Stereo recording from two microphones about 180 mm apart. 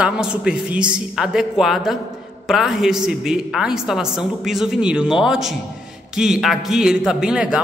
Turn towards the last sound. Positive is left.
turn(degrees=-5)  # may be behind; listen again after turning